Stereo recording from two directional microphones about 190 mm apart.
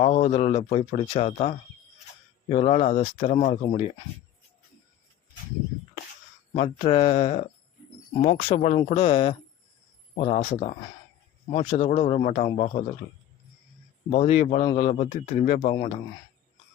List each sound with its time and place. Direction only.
0.0 s speech: 40° left (ahead or behind)
6.6 s speech: 30° left (ahead or behind)
14.1 s speech: 35° left (ahead or behind)